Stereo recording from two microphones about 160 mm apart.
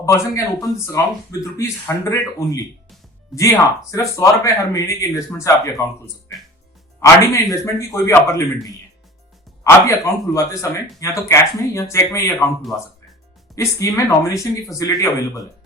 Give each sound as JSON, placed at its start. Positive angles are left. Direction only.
{"t": 0.0, "sound": "speech", "side_deg": 20}
{"t": 3.3, "sound": "speech", "side_deg": 20}
{"t": 7.0, "sound": "speech", "side_deg": 20}